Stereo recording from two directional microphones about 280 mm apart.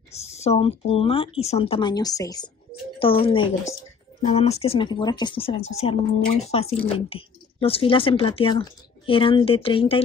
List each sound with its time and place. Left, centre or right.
0.1 s speech: left